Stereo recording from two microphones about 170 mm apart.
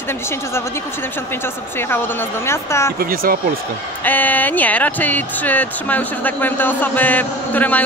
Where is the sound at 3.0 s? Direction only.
60° right (ahead or behind).